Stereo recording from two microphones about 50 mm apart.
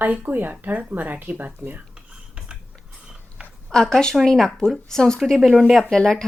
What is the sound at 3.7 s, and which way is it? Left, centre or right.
Speech, centre.